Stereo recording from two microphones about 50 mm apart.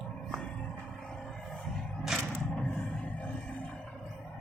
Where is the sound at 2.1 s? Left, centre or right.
Centre.